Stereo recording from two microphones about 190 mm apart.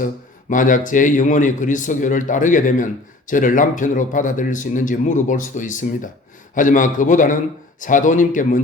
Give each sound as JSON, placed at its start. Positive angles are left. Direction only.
{"t": 0.5, "sound": "speech", "side_deg": 45}